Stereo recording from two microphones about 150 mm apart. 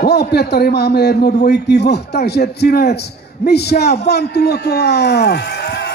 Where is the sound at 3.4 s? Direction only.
90° left.